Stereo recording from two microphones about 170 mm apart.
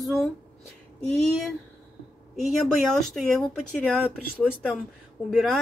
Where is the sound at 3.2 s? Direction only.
Centre (ahead or behind).